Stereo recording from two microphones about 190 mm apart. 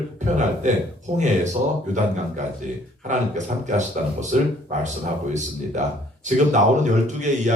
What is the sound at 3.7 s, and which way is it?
A man's voice, 40° right (ahead or behind).